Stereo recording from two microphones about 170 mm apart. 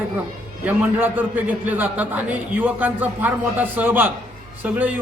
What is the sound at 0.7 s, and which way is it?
Speech, 10° right (ahead or behind).